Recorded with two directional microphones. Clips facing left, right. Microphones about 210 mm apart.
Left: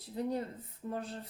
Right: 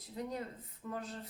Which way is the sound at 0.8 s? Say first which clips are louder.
Left 3 dB; 30° left (ahead or behind).